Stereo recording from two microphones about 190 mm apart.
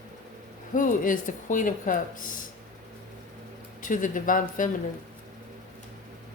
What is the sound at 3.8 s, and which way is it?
Speech, 45° left (ahead or behind).